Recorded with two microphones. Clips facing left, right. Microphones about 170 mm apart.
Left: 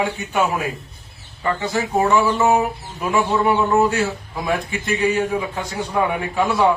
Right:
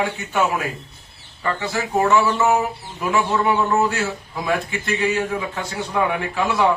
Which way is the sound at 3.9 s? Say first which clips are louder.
Left 3 dB; 15° left (ahead or behind).